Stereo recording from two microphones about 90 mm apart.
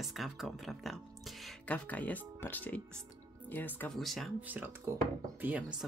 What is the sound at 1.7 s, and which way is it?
Speech, 15° left (ahead or behind).